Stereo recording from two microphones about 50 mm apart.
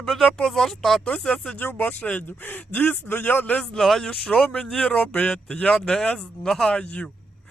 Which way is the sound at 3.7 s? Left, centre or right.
Centre.